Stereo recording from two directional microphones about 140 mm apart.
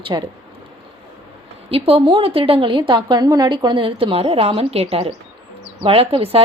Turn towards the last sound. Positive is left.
turn(degrees=-45)  # may be behind; listen again after turning